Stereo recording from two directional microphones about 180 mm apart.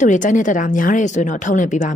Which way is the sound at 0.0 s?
45° left (ahead or behind).